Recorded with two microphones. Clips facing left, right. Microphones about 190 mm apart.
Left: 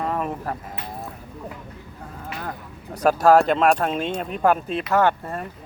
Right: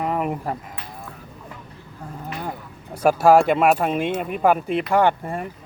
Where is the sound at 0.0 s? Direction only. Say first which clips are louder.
Right 2 dB; 15° right (ahead or behind).